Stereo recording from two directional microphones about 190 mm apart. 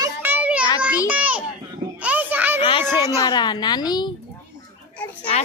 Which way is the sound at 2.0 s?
10° right (ahead or behind).